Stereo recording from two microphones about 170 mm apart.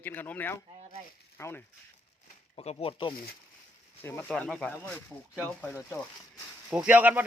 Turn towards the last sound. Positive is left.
turn(degrees=-10)  # may be behind; listen again after turning